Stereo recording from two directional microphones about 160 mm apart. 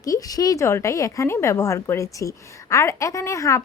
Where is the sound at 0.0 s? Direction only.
20° left (ahead or behind).